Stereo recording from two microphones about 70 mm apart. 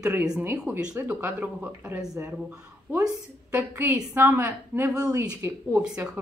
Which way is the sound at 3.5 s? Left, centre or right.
Right.